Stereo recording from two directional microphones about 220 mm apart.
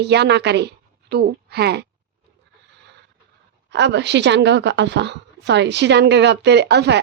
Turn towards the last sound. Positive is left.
turn(degrees=-50)  # may be behind; listen again after turning